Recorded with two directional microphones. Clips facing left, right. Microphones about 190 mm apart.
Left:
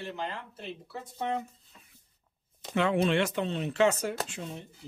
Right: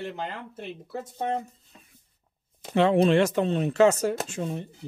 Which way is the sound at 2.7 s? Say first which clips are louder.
Right 6 dB; 35° right (ahead or behind).